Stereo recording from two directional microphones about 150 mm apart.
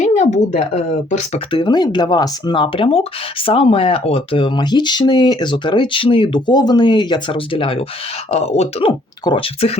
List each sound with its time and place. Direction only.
0.0 s speech: 50° left (ahead or behind)
1.5 s speech: 30° left (ahead or behind)